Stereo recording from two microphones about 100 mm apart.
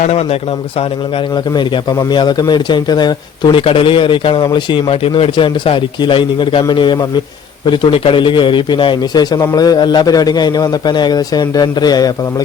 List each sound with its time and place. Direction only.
0.1 s speech: 90° left
1.5 s a man's voice: 45° left (ahead or behind)
3.6 s a man's voice: 65° left (ahead or behind); by 12.1 s 40° left (ahead or behind)